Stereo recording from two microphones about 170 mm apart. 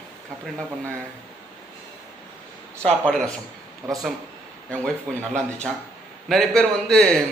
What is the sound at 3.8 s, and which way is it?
Speech, 20° right (ahead or behind).